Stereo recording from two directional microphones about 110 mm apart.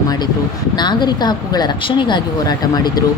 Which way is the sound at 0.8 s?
40° left (ahead or behind).